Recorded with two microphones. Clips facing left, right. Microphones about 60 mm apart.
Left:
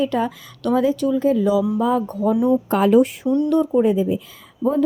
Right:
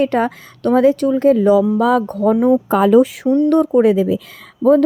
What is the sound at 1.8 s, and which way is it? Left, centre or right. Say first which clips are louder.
Speech: right 5 dB; right.